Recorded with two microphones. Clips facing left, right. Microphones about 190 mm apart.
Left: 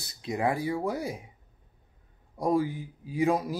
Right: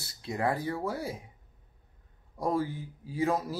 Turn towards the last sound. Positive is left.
turn(degrees=15)  # may be behind; listen again after turning